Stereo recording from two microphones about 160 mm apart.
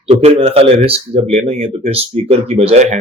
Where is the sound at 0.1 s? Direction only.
40° right (ahead or behind).